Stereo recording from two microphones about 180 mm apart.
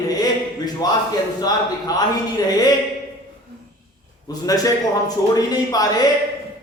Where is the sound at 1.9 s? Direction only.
20° left (ahead or behind).